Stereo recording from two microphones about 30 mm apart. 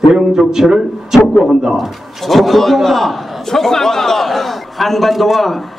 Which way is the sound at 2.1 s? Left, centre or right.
Centre.